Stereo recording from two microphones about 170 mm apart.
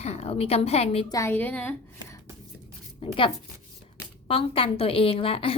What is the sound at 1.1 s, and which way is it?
Speech, 15° left (ahead or behind).